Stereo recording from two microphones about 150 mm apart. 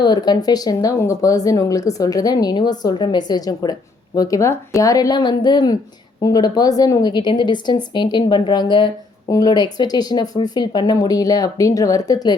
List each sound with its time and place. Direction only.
0.0 s speech: 30° left (ahead or behind)